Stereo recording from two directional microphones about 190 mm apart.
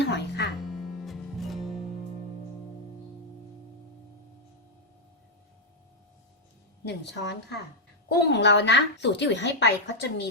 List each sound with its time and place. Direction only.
0.0 s music: 65° left (ahead or behind)
0.6 s music: centre (ahead or behind)
6.8 s a woman's voice: 65° left (ahead or behind)